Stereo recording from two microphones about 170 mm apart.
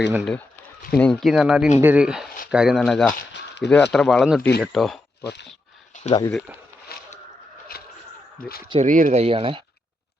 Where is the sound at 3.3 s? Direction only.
90° left.